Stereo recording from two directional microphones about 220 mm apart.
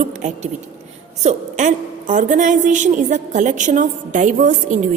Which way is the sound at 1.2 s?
35° right (ahead or behind).